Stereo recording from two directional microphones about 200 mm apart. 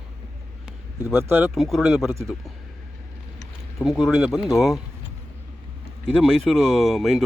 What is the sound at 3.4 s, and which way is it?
Speech, centre (ahead or behind).